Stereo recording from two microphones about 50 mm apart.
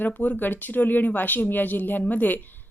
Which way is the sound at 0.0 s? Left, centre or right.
Left.